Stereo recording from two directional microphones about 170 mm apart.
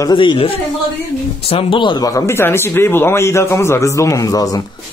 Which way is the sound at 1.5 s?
30° left (ahead or behind).